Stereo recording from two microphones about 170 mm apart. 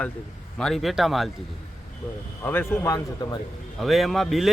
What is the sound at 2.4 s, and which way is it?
Speech, 15° left (ahead or behind).